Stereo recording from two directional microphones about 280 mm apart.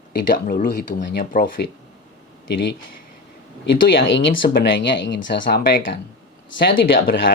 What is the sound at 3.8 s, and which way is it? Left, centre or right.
Speech, left.